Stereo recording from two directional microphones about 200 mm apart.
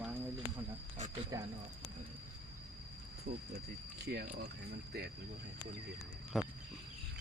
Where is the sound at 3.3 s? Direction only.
50° right (ahead or behind).